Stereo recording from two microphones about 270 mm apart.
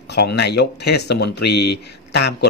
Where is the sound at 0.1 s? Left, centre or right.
Left.